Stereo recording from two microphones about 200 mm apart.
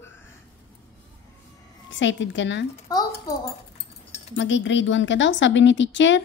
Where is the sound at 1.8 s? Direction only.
65° left (ahead or behind).